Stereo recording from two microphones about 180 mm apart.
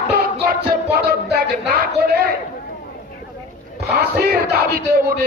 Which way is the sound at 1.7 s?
55° right (ahead or behind).